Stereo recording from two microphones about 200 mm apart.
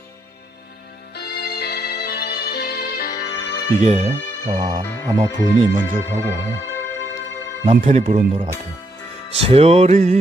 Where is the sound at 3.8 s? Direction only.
35° right (ahead or behind).